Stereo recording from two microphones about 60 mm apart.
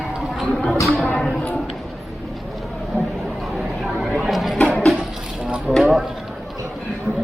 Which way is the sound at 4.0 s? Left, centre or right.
Centre.